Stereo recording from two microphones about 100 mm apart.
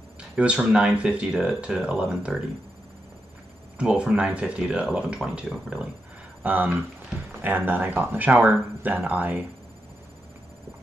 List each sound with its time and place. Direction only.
0.2 s speech: 10° right (ahead or behind)
3.7 s speech: 10° right (ahead or behind)